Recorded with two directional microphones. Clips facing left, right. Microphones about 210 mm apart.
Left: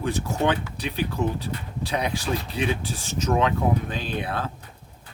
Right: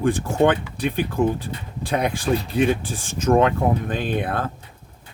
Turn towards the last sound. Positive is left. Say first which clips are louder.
# right 5 dB
turn(degrees=-50)  # may be behind; listen again after turning